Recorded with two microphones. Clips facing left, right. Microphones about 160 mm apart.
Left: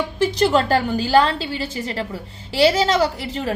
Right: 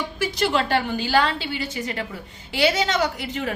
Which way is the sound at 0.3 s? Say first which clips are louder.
Left 4 dB; 35° left (ahead or behind).